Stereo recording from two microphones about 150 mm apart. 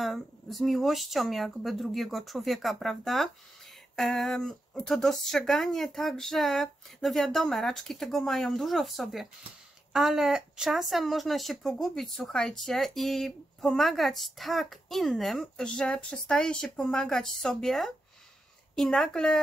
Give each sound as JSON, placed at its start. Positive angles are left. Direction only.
{"t": 0.0, "sound": "speech", "side_deg": 0}